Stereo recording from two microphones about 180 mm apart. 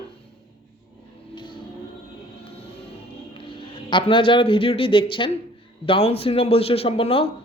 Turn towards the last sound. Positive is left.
turn(degrees=30)  # may be behind; listen again after turning